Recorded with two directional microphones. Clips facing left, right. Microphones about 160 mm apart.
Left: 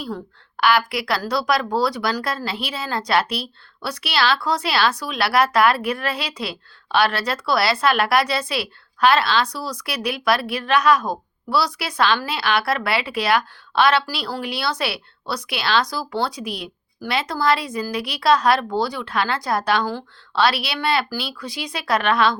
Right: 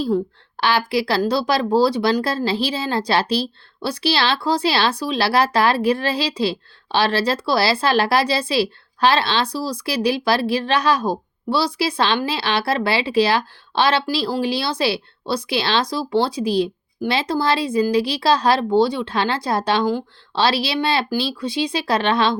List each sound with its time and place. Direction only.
0.6 s speech: 30° right (ahead or behind)